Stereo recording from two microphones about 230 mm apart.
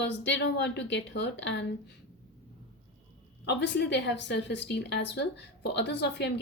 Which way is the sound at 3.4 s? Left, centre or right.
Left.